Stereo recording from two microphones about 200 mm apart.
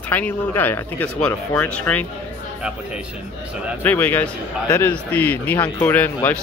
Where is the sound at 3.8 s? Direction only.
10° left (ahead or behind).